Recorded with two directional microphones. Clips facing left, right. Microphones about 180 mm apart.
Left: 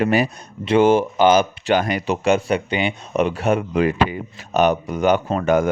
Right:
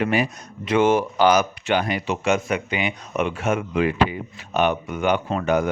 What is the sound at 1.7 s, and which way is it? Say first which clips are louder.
A man's voice: left 3 dB; 45° left (ahead or behind).